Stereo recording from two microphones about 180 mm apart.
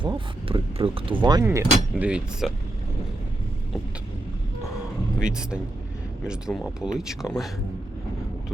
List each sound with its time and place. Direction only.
0.0 s speech: 30° right (ahead or behind); by 2.5 s 5° right (ahead or behind)
5.2 s speech: 5° right (ahead or behind)